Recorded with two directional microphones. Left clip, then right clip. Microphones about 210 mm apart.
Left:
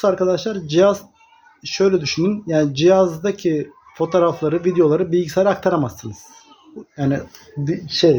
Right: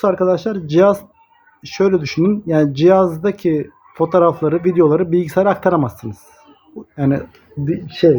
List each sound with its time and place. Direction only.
0.0 s speech: 25° right (ahead or behind)